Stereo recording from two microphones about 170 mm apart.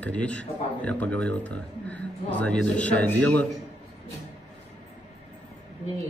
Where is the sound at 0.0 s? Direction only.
10° left (ahead or behind).